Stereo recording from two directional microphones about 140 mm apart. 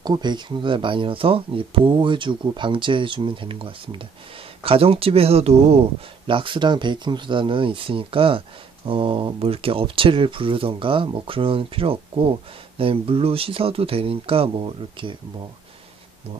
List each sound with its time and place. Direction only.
0.0 s speech: 30° right (ahead or behind)